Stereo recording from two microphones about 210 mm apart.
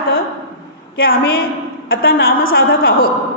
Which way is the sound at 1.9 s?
45° left (ahead or behind).